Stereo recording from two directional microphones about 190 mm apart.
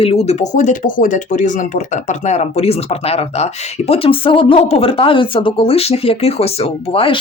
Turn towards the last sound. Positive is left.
turn(degrees=30)  # may be behind; listen again after turning